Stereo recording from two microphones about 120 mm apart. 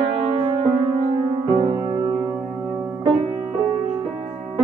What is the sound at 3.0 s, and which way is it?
Music, 50° right (ahead or behind).